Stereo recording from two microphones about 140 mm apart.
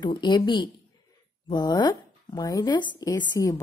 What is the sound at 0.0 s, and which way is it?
A woman's voice, 30° left (ahead or behind).